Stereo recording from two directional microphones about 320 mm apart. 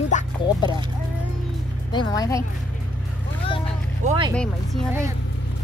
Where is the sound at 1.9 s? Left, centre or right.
Centre.